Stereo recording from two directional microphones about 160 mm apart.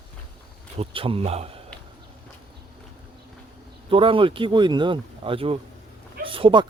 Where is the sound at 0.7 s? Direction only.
35° right (ahead or behind).